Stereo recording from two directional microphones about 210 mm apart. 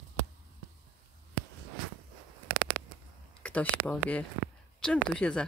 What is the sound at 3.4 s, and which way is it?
Speech, 5° left (ahead or behind).